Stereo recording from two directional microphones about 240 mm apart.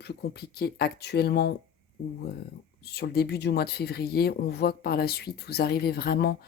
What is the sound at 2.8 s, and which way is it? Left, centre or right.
Speech, left.